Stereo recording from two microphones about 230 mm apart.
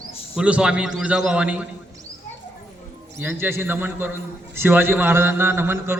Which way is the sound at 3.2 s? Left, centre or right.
Centre.